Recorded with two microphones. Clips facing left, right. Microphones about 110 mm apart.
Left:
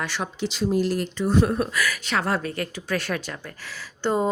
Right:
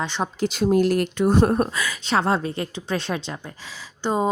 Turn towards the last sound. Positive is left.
turn(degrees=-20)  # may be behind; listen again after turning